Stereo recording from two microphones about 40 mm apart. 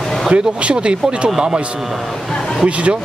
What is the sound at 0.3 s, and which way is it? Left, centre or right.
Speech, right.